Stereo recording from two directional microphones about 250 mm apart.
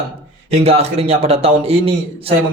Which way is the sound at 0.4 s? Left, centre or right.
Right.